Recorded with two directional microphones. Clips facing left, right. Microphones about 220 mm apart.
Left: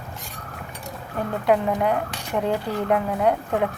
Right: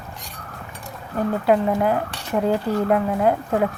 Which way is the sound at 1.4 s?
Centre (ahead or behind).